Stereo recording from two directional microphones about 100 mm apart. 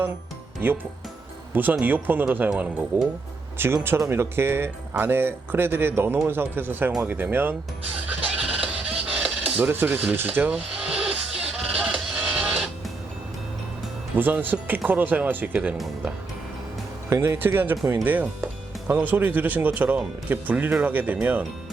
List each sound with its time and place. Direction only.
0.6 s speech: 20° right (ahead or behind)
3.8 s speech: 25° right (ahead or behind)
8.0 s music: 15° right (ahead or behind)
9.4 s a sound: 20° right (ahead or behind)
10.1 s music: 20° right (ahead or behind)
14.2 s speech: 20° right (ahead or behind)
17.1 s speech: 25° right (ahead or behind)